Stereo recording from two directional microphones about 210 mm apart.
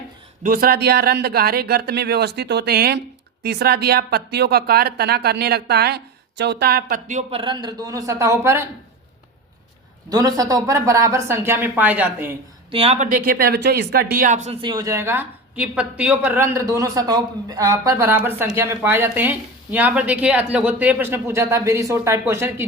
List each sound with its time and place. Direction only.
0.4 s speech: 45° right (ahead or behind); by 8.6 s 10° right (ahead or behind)
10.1 s speech: 20° right (ahead or behind)
12.7 s speech: 30° right (ahead or behind); by 22.6 s 10° right (ahead or behind)